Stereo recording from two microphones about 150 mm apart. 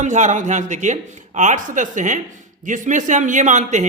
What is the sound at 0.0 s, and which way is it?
A man's voice, 55° right (ahead or behind).